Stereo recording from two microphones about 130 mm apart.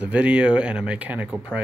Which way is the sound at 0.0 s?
10° right (ahead or behind).